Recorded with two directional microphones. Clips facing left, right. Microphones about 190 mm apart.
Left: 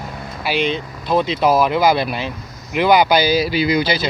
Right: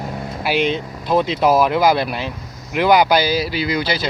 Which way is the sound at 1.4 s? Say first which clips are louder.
Even; centre (ahead or behind).